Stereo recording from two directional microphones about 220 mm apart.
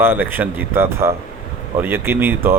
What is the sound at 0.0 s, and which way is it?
Speech, 10° right (ahead or behind).